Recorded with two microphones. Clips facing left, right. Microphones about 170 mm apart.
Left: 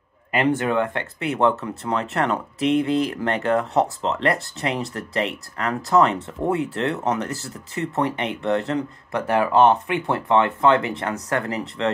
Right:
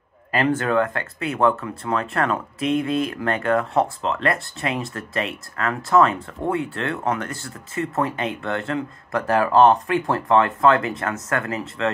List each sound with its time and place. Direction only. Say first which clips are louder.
0.3 s speech: even; 20° left (ahead or behind)